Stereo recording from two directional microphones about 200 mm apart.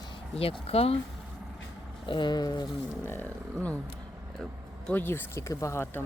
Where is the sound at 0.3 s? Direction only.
30° left (ahead or behind).